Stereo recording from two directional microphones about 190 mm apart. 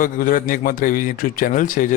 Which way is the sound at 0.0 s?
45° left (ahead or behind).